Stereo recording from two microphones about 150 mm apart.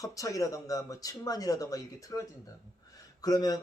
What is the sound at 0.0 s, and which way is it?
Speech, 20° left (ahead or behind).